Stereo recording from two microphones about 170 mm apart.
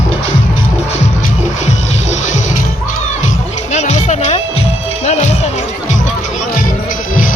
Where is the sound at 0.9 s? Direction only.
40° left (ahead or behind).